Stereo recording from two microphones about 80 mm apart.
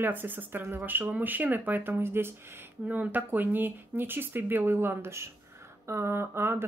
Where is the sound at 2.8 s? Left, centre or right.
Centre.